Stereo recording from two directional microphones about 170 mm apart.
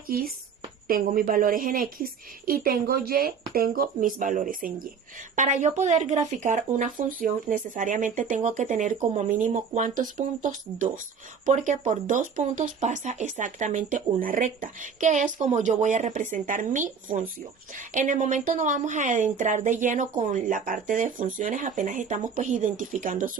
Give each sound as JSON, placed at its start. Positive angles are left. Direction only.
{"t": 0.1, "sound": "speech", "side_deg": -60}
{"t": 5.4, "sound": "speech", "side_deg": -45}